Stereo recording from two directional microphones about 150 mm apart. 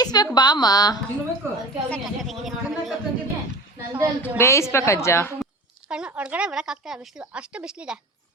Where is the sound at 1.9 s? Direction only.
Centre (ahead or behind).